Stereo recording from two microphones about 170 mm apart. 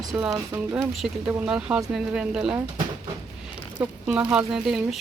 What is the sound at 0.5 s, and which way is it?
Speech, 15° right (ahead or behind).